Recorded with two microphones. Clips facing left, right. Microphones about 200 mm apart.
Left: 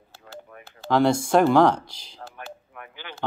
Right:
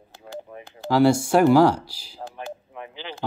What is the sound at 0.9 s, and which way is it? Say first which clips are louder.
Speech: right 2 dB; 10° right (ahead or behind).